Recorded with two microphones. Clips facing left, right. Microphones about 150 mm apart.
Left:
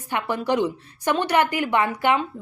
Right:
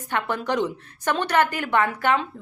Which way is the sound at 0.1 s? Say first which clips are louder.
Left 2 dB; 10° left (ahead or behind).